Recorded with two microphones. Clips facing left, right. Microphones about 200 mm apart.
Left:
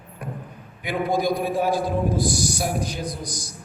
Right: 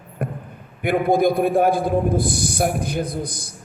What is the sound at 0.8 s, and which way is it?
A man's voice, 55° right (ahead or behind).